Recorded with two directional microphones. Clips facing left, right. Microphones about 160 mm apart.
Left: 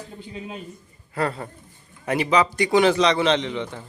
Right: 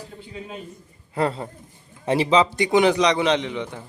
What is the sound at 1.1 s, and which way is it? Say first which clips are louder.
A man's voice: right 2 dB; 20° right (ahead or behind).